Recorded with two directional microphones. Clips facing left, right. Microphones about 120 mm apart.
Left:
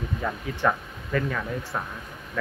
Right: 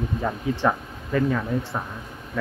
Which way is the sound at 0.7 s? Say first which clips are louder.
Right 2 dB; 15° right (ahead or behind).